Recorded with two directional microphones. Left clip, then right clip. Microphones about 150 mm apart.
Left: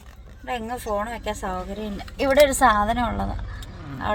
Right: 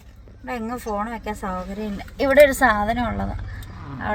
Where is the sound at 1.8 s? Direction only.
15° right (ahead or behind).